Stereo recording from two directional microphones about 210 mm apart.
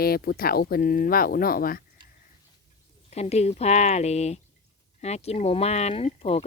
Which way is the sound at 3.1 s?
30° left (ahead or behind).